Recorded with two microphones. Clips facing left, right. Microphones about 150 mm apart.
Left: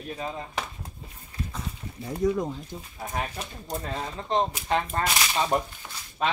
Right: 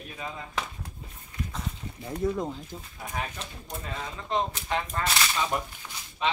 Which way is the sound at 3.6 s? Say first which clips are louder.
Left 5 dB; 40° left (ahead or behind).